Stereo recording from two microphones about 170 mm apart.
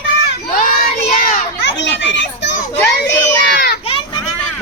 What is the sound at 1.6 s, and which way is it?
Children playing, 90° left.